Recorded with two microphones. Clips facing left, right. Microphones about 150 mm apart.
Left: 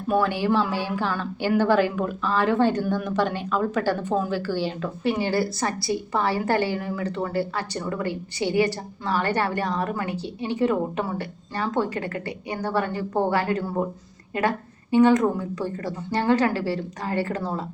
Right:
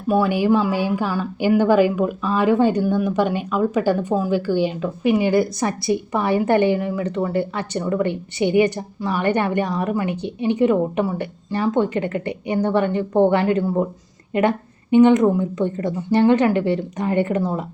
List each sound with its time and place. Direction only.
0.1 s a woman's voice: 10° right (ahead or behind)